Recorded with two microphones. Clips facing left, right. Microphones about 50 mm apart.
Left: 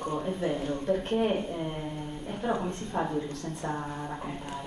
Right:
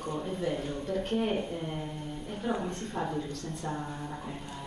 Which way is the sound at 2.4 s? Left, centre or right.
Centre.